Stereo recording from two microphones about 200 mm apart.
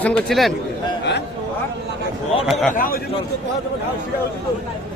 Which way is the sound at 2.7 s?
45° left (ahead or behind).